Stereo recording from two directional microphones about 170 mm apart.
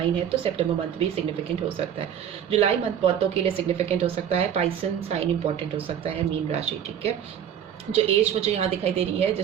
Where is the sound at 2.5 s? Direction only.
35° right (ahead or behind).